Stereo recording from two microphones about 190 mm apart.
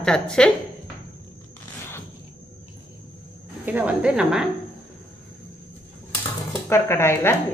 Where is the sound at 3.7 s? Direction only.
5° right (ahead or behind).